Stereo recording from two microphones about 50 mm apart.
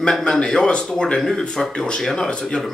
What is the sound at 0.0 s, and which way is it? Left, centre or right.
Speech, centre.